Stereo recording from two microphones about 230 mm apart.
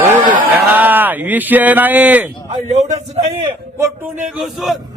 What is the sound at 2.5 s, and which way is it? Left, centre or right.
A man's voice, right.